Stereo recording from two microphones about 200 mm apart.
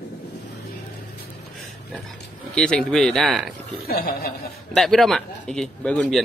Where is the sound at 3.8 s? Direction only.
50° left (ahead or behind).